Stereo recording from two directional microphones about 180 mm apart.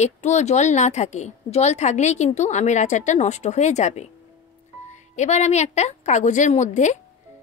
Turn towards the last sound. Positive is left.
turn(degrees=40)  # may be behind; listen again after turning